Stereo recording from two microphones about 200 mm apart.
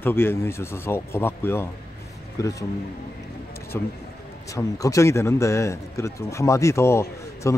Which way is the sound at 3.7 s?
10° left (ahead or behind).